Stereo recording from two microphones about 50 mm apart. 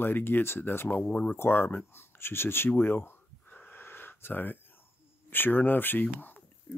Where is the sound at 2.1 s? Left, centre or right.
Left.